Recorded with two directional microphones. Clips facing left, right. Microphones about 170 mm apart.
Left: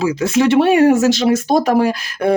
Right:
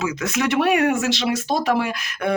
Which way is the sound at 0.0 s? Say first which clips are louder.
Left 8 dB; 30° left (ahead or behind).